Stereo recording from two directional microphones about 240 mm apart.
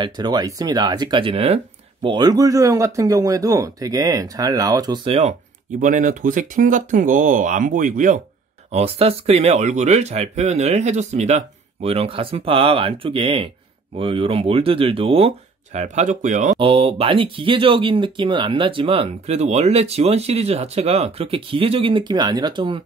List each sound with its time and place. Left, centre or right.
0.0 s a man's voice: centre